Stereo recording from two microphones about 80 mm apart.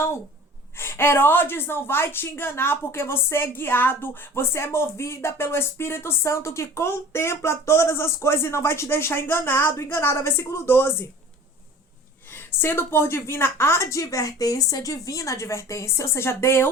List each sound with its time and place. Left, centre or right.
0.8 s a woman's voice: left
12.3 s a woman's voice: left